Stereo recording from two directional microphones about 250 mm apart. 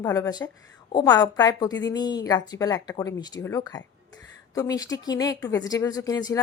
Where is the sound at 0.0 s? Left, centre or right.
Centre.